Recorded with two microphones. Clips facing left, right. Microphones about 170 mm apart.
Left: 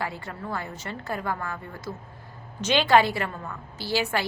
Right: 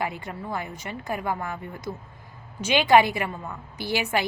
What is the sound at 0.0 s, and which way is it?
A woman's voice, 15° right (ahead or behind).